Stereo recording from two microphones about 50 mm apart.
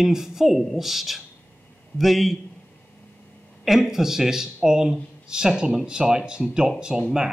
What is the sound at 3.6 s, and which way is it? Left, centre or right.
Speech, centre.